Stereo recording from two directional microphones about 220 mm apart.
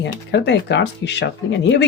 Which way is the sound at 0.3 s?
50° left (ahead or behind).